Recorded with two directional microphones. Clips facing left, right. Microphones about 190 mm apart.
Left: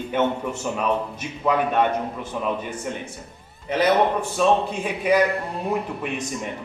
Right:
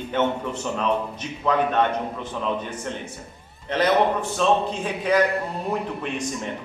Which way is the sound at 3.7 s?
10° left (ahead or behind).